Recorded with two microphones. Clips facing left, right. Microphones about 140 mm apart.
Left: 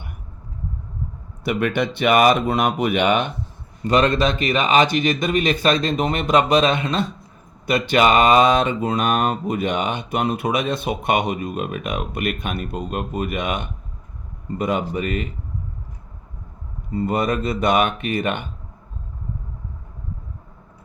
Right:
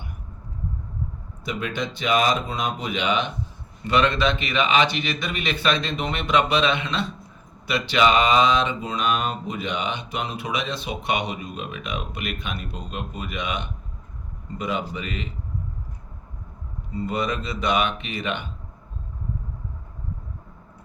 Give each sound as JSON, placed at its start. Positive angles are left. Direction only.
{"t": 1.5, "sound": "speech", "side_deg": 65}
{"t": 3.8, "sound": "mantra", "side_deg": 40}
{"t": 16.9, "sound": "mantra", "side_deg": 50}